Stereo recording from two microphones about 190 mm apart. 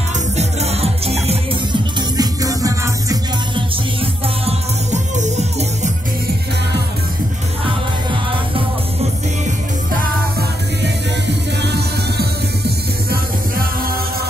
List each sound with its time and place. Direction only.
0.4 s music: 35° right (ahead or behind); by 3.6 s 20° right (ahead or behind)
4.0 s music: 35° right (ahead or behind)
11.6 s music: 60° right (ahead or behind)
13.1 s music: 50° right (ahead or behind)